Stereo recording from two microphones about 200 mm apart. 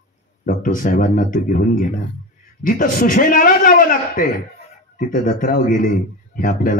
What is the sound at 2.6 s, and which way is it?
A man's voice, 45° left (ahead or behind).